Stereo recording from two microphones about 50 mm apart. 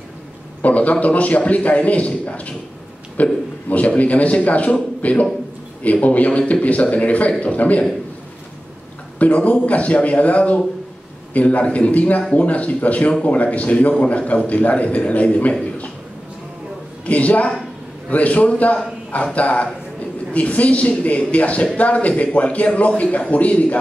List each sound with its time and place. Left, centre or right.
0.6 s a man's voice: left
9.2 s a man's voice: left
17.0 s a man's voice: left